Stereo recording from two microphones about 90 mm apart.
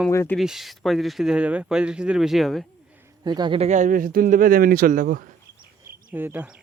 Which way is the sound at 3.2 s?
50° right (ahead or behind).